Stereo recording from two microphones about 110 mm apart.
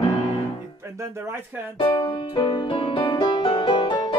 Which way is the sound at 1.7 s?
50° left (ahead or behind).